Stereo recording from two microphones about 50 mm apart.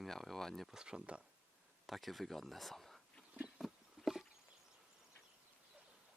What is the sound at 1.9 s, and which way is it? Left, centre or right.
Speech, centre.